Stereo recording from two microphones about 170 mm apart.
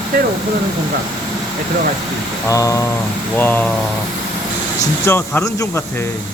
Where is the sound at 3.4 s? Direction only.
10° left (ahead or behind).